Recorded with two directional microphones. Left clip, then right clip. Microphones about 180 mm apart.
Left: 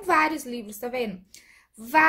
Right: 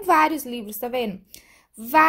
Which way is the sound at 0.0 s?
45° right (ahead or behind).